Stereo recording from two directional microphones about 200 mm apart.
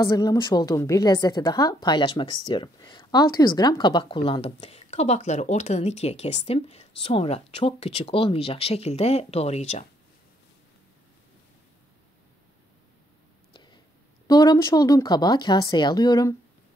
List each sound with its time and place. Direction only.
0.0 s a woman's voice: 15° left (ahead or behind); by 9.8 s 35° left (ahead or behind)
13.5 s a sound: 20° left (ahead or behind)
14.2 s a woman's voice: 20° left (ahead or behind)